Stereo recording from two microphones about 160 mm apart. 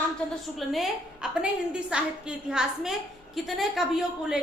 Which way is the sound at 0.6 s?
Centre (ahead or behind).